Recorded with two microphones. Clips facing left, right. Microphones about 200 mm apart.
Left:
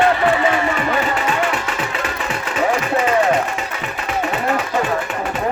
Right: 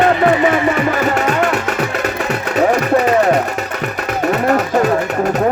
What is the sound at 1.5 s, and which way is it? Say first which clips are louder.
Music: right 6 dB; 65° right (ahead or behind).